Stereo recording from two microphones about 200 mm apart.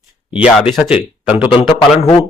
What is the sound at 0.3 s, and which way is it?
Speech, 5° right (ahead or behind).